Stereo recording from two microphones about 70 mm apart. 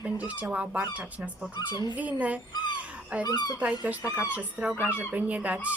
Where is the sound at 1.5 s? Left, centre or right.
Left.